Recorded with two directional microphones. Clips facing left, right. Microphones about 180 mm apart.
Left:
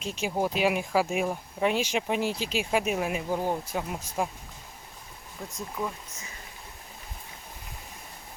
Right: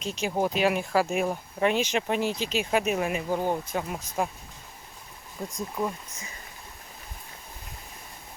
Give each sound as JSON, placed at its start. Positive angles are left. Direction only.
{"t": 0.0, "sound": "speech", "side_deg": 5}
{"t": 5.4, "sound": "speech", "side_deg": -30}